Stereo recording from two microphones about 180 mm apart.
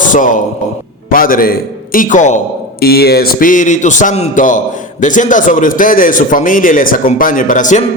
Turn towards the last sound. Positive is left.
turn(degrees=45)  # may be behind; listen again after turning